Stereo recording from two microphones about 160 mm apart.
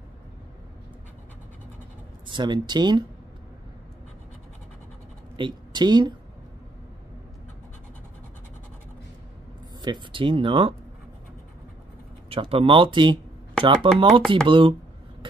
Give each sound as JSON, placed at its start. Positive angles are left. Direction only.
{"t": 2.2, "sound": "speech", "side_deg": -30}
{"t": 5.4, "sound": "a woman's voice", "side_deg": -30}
{"t": 9.8, "sound": "speech", "side_deg": -30}
{"t": 12.3, "sound": "speech", "side_deg": -35}